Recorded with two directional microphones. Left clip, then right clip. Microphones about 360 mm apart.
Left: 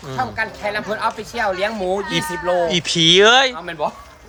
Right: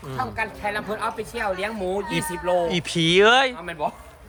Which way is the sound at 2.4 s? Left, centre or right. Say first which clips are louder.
Left 4 dB; centre.